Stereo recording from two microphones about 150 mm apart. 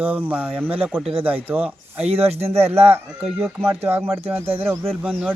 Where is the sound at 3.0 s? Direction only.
5° right (ahead or behind).